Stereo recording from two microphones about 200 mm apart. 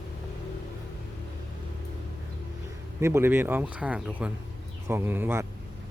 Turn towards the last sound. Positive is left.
turn(degrees=-10)  # may be behind; listen again after turning